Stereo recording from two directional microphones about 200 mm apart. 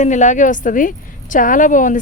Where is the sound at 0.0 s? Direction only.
35° left (ahead or behind).